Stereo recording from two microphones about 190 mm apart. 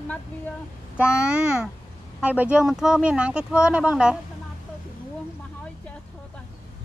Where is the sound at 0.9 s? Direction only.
5° right (ahead or behind).